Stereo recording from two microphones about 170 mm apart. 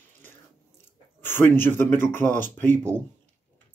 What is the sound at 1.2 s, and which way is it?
Speech, 15° left (ahead or behind).